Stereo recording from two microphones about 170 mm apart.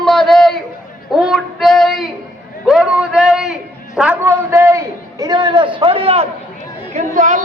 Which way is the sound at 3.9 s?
5° right (ahead or behind).